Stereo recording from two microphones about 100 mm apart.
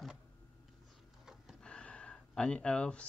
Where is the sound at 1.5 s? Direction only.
10° left (ahead or behind).